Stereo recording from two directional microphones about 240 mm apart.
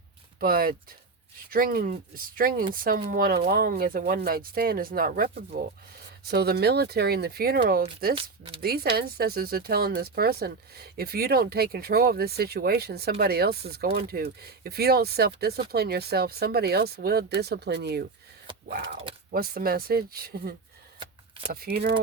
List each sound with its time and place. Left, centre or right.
0.3 s speech: right
8.1 s speech: right
8.6 s speech: right